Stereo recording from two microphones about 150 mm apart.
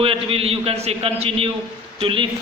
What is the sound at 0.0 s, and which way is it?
A man's voice, 40° right (ahead or behind).